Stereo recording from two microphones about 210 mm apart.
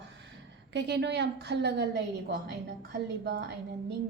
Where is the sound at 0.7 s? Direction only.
55° right (ahead or behind).